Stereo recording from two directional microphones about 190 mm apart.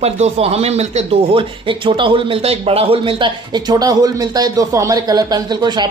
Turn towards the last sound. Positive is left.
turn(degrees=-20)  # may be behind; listen again after turning